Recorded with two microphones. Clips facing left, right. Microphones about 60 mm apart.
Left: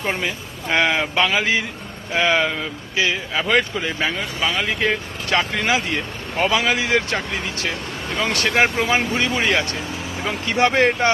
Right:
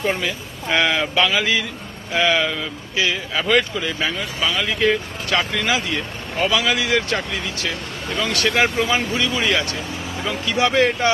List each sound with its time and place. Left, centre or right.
0.2 s speech: left
3.3 s speech: centre
3.8 s speech: left